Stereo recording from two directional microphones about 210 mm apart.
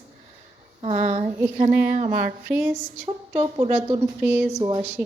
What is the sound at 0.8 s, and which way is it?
Speech, 30° right (ahead or behind).